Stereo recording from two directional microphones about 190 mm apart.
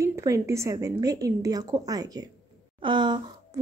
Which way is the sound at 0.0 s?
15° right (ahead or behind).